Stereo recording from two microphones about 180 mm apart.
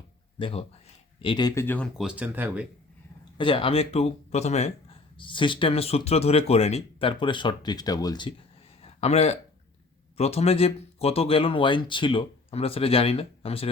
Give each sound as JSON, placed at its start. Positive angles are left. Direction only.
{"t": 0.3, "sound": "speech", "side_deg": 30}
{"t": 1.6, "sound": "speech", "side_deg": 10}
{"t": 2.0, "sound": "speech", "side_deg": -5}
{"t": 3.3, "sound": "speech", "side_deg": 30}
{"t": 8.8, "sound": "a sound", "side_deg": 35}
{"t": 10.2, "sound": "speech", "side_deg": 35}